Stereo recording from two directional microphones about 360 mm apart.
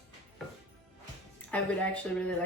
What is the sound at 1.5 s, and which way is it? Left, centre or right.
Speech, centre.